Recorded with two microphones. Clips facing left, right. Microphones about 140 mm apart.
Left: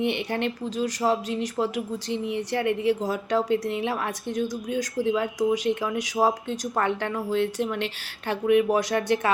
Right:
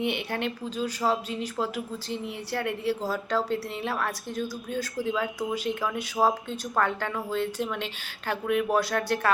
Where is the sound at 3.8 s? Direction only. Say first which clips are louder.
Left 2 dB; 10° left (ahead or behind).